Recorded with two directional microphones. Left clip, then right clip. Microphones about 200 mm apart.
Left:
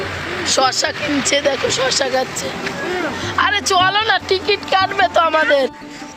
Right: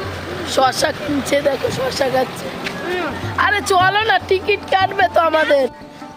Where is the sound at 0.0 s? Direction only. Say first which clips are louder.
Left 3 dB; 55° right (ahead or behind).